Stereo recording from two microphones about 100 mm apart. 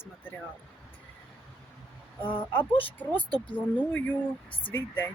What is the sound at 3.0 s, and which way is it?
Speech, 15° left (ahead or behind).